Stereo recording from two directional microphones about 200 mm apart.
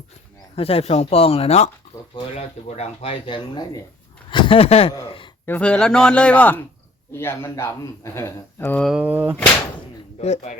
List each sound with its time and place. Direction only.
0.5 s speech: 30° left (ahead or behind)
5.5 s a man's voice: 5° left (ahead or behind)
10.2 s a man's voice: 35° left (ahead or behind)